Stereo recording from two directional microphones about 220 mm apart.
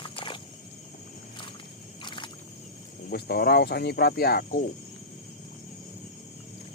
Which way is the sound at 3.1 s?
45° left (ahead or behind).